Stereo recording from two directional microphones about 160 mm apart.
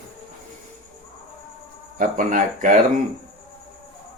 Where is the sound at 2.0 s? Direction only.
55° right (ahead or behind).